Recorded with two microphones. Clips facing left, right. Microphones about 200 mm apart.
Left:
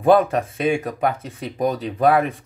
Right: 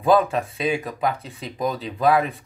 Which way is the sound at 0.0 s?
50° left (ahead or behind).